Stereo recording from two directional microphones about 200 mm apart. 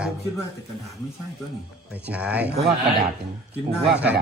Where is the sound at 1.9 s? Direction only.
5° right (ahead or behind).